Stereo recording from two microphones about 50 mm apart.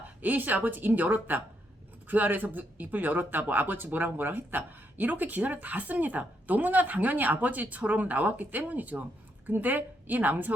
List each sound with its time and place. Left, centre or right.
0.2 s speech: right